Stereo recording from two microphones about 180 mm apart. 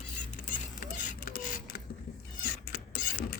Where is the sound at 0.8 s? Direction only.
45° left (ahead or behind).